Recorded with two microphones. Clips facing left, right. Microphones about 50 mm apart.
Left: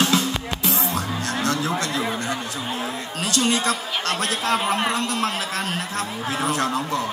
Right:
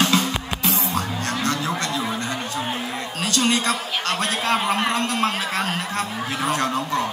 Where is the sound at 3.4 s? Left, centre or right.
Right.